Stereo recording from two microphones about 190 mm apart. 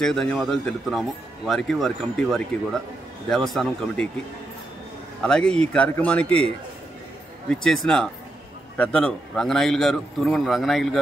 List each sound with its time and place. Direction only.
0.0 s speech: 5° left (ahead or behind)
5.2 s speech: 5° left (ahead or behind)